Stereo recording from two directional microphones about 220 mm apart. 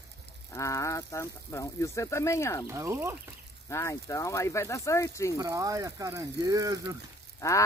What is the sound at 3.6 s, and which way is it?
Speech, 10° left (ahead or behind).